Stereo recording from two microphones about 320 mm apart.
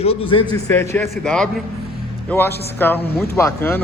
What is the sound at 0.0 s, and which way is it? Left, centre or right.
Speech, centre.